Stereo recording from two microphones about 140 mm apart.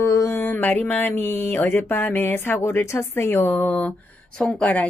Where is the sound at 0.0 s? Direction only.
25° left (ahead or behind).